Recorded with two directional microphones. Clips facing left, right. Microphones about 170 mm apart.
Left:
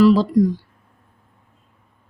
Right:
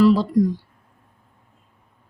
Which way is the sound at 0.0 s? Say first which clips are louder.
Left 2 dB; 90° left.